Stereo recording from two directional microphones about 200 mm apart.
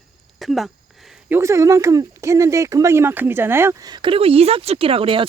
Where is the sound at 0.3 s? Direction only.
Centre (ahead or behind).